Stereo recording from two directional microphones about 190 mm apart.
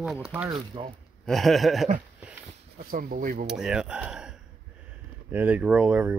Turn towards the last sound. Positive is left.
turn(degrees=-10)  # may be behind; listen again after turning